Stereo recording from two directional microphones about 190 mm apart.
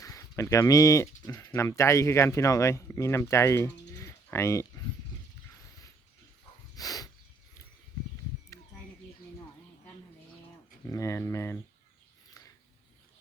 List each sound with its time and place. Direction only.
0.0 s speech: 15° left (ahead or behind)
6.7 s a sound: 20° left (ahead or behind)
10.8 s speech: 15° left (ahead or behind)